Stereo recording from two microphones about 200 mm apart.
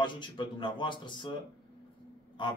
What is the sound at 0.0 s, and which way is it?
Speech, 25° left (ahead or behind).